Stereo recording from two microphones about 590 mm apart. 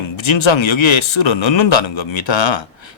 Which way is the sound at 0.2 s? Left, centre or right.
Left.